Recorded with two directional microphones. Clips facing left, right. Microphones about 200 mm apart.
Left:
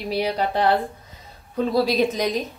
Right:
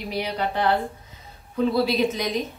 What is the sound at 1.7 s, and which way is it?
Speech, 40° left (ahead or behind).